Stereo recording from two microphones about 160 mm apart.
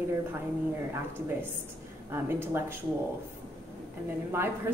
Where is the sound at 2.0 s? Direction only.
15° right (ahead or behind).